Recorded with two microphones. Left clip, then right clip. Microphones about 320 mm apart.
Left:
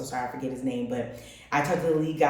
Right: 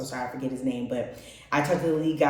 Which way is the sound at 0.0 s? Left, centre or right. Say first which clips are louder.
Left 1 dB; centre.